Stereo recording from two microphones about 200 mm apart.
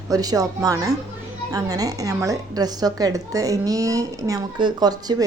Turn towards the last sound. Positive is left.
turn(degrees=-20)  # may be behind; listen again after turning